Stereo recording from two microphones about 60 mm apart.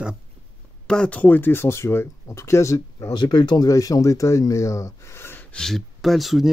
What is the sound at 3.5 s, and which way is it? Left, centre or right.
Speech, left.